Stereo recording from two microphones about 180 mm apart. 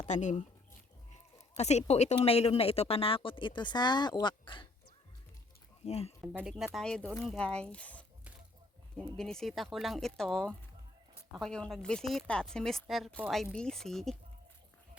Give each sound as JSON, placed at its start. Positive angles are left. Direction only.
{"t": 0.0, "sound": "speech", "side_deg": 40}
{"t": 1.5, "sound": "a woman's voice", "side_deg": 35}
{"t": 5.8, "sound": "a woman's voice", "side_deg": 35}
{"t": 6.4, "sound": "speech", "side_deg": -5}
{"t": 9.1, "sound": "speech", "side_deg": 5}